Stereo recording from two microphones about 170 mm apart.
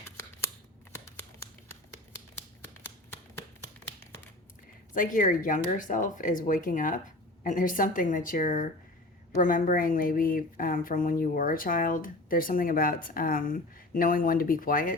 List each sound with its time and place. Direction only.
4.9 s a woman's voice: 50° left (ahead or behind)